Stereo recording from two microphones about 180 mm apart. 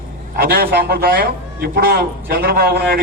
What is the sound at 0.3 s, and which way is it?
A man's voice, 55° right (ahead or behind).